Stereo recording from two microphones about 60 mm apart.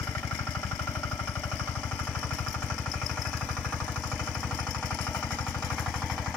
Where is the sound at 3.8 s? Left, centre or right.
Centre.